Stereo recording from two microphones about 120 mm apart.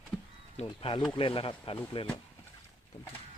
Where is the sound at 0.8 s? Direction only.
45° left (ahead or behind).